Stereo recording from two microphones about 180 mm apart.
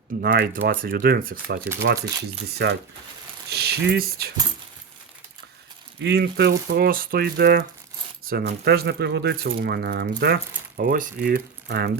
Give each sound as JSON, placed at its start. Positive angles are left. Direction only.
{"t": 0.2, "sound": "speech", "side_deg": -55}
{"t": 2.5, "sound": "speech", "side_deg": -65}
{"t": 6.0, "sound": "speech", "side_deg": -70}
{"t": 10.8, "sound": "speech", "side_deg": -50}